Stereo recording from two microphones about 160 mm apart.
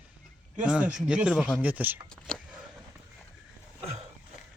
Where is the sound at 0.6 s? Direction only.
5° right (ahead or behind).